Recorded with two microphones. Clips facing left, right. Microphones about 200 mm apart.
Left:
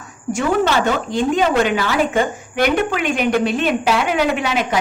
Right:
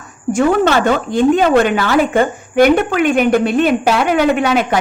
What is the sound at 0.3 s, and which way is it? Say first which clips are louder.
A woman's voice: right 4 dB; 55° right (ahead or behind).